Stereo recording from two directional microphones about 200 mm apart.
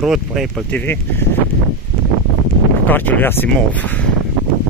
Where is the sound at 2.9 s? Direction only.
10° left (ahead or behind).